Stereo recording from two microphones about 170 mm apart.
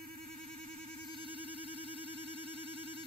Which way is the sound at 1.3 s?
30° left (ahead or behind).